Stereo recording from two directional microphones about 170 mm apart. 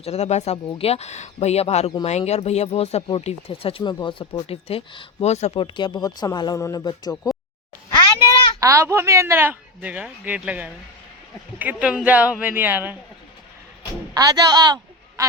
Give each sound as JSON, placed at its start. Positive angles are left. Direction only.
{"t": 0.0, "sound": "speech", "side_deg": 40}
{"t": 8.6, "sound": "speech", "side_deg": -15}
{"t": 14.1, "sound": "a woman's voice", "side_deg": -20}